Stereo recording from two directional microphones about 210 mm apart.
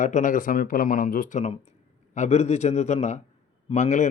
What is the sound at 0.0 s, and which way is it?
Speech, 35° left (ahead or behind).